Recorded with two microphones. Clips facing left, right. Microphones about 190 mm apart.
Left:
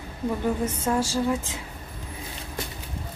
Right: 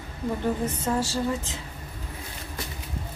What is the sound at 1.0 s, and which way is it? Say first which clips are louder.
Speech: left 2 dB; 10° left (ahead or behind).